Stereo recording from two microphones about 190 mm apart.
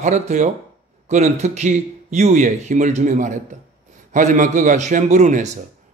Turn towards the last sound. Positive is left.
turn(degrees=-40)  # may be behind; listen again after turning